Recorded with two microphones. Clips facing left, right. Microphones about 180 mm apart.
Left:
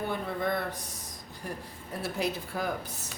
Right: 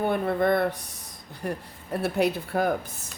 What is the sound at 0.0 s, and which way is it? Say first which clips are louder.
A woman's voice: right 8 dB; 60° right (ahead or behind).